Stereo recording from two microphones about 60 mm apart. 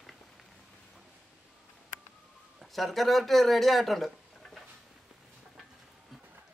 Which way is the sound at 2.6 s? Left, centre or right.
Centre.